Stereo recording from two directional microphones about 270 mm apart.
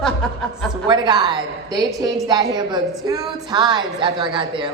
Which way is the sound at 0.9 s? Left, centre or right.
Centre.